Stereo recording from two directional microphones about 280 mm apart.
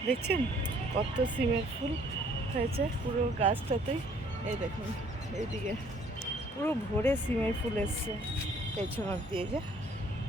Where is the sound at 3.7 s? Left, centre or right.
Right.